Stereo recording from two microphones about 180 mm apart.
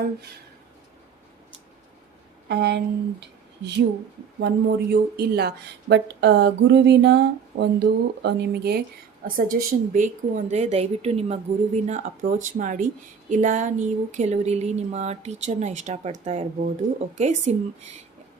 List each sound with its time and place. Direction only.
2.5 s speech: 70° right (ahead or behind)
9.2 s a woman's voice: 50° right (ahead or behind)